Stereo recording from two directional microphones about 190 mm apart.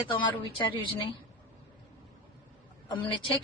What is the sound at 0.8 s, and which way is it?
Speech, 25° left (ahead or behind).